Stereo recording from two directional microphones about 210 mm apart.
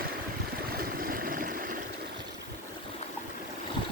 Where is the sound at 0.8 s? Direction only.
45° right (ahead or behind).